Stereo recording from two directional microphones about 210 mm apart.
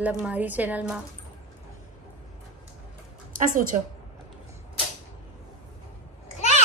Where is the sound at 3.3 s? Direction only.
40° right (ahead or behind).